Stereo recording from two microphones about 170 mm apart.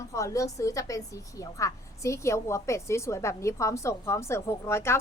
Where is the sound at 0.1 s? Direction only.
20° left (ahead or behind).